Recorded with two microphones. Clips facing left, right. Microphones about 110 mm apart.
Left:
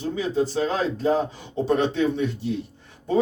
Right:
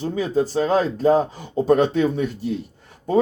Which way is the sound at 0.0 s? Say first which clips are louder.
Right 3 dB; 45° right (ahead or behind).